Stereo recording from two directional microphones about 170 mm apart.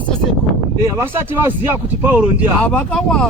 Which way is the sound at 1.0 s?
15° right (ahead or behind).